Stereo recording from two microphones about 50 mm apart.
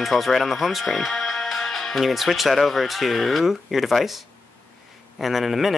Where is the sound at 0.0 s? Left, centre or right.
Centre.